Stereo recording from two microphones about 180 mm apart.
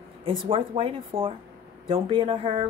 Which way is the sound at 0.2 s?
30° right (ahead or behind).